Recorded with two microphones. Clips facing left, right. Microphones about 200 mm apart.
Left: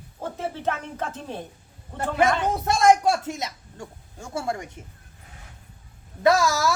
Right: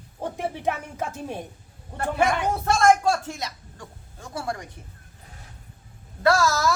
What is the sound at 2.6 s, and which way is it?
A woman's voice, 15° left (ahead or behind).